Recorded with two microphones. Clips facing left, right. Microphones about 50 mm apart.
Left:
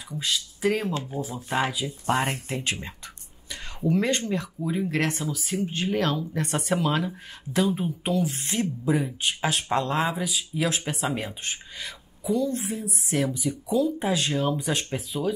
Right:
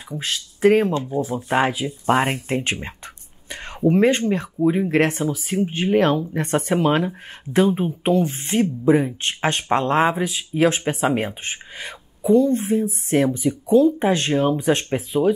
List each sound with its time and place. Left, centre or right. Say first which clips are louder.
0.1 s speech: right 2 dB; right
3.4 s a sound: right 7 dB; right
4.2 s speech: right 9 dB; right
8.9 s speech: right 6 dB; right
12.8 s speech: right 8 dB; right